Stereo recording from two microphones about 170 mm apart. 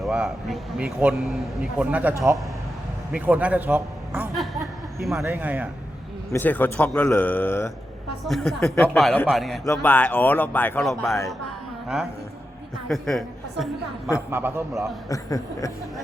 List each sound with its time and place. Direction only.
0.0 s a man's voice: centre (ahead or behind)
4.4 s a sound: centre (ahead or behind)
5.2 s speech: 10° right (ahead or behind)
6.3 s a man's voice: 10° left (ahead or behind)
12.9 s a woman's voice: centre (ahead or behind)
14.3 s speech: 15° right (ahead or behind)
14.7 s a man's voice: centre (ahead or behind)
15.1 s speech: 20° left (ahead or behind)